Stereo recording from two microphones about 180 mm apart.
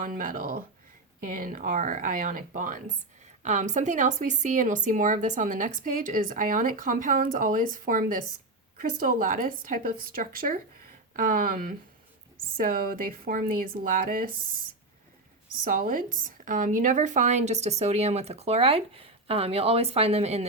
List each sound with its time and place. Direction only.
0.0 s speech: 50° right (ahead or behind)